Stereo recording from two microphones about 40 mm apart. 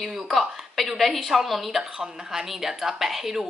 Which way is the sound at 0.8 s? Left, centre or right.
Centre.